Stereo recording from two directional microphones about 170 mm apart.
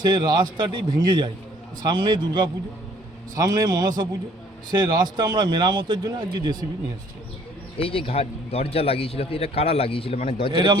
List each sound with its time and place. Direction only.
0.0 s speech: 25° right (ahead or behind)
7.8 s a man's voice: 35° left (ahead or behind)
10.5 s speech: 25° right (ahead or behind)